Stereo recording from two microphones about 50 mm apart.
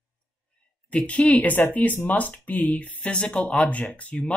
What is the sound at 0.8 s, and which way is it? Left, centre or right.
Speech, left.